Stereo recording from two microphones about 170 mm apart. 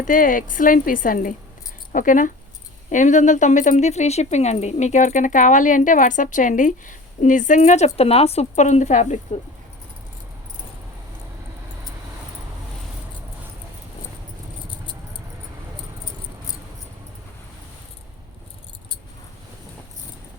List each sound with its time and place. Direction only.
0.0 s speech: 55° left (ahead or behind)